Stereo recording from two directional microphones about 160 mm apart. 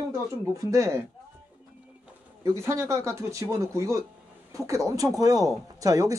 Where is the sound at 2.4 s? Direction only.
15° right (ahead or behind).